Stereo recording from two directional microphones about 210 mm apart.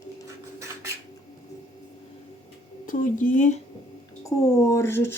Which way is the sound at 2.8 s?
40° left (ahead or behind).